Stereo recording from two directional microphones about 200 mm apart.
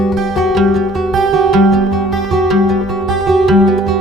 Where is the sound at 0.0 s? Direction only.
Centre (ahead or behind).